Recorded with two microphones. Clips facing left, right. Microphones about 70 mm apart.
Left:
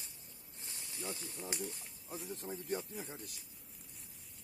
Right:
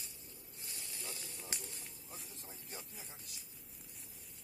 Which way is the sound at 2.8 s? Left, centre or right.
Centre.